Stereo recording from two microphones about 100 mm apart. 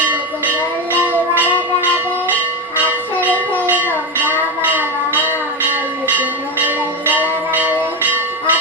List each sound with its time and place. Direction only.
1.0 s music: 15° right (ahead or behind)
3.2 s music: 20° right (ahead or behind)
4.3 s a sound: 20° right (ahead or behind)
6.7 s bell: 15° right (ahead or behind)